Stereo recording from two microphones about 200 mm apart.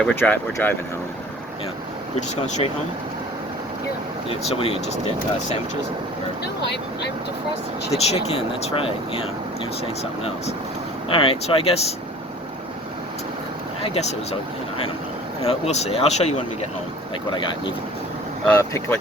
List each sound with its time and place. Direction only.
0.0 s speech: 10° left (ahead or behind)
4.3 s speech: 30° left (ahead or behind)
7.9 s speech: 30° left (ahead or behind)
10.0 s speech: 30° left (ahead or behind)
13.8 s speech: 30° left (ahead or behind)
15.4 s speech: 30° left (ahead or behind)
18.4 s speech: 10° left (ahead or behind)